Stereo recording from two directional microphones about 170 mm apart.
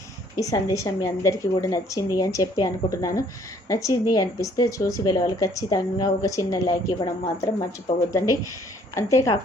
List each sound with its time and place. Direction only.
0.3 s speech: 20° left (ahead or behind)
9.0 s a woman's voice: 20° left (ahead or behind)